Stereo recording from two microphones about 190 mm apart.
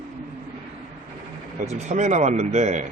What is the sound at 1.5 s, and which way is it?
Speech, 35° right (ahead or behind).